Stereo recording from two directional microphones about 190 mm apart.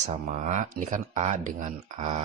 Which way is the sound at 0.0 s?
35° right (ahead or behind).